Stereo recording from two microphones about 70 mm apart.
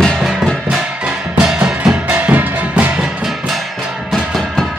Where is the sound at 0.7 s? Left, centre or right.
Centre.